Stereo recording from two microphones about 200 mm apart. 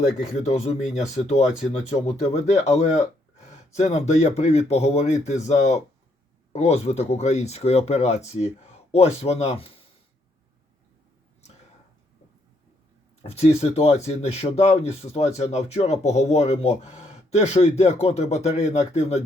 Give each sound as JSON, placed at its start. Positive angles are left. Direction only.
{"t": 0.2, "sound": "speech", "side_deg": 35}
{"t": 13.2, "sound": "speech", "side_deg": 30}